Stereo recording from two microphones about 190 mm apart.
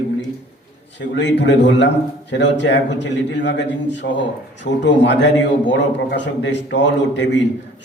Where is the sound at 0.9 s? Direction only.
70° left (ahead or behind).